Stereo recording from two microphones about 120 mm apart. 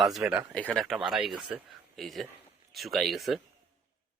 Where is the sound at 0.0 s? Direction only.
Centre (ahead or behind).